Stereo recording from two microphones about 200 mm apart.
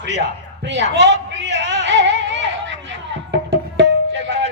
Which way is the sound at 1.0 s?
35° left (ahead or behind).